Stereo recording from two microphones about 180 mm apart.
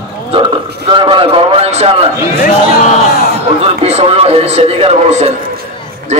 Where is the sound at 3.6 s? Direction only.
35° right (ahead or behind).